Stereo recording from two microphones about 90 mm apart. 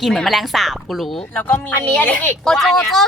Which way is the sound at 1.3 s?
15° left (ahead or behind).